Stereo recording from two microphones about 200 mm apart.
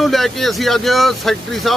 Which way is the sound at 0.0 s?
Centre (ahead or behind).